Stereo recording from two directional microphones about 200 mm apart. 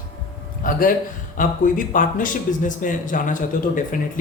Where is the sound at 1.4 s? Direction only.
40° left (ahead or behind).